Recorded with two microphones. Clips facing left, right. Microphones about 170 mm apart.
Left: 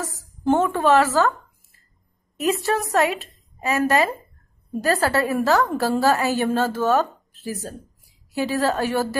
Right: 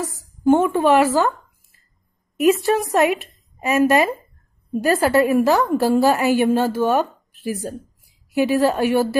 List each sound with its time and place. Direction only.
0.6 s a woman's voice: 10° right (ahead or behind)
2.4 s a woman's voice: 15° right (ahead or behind)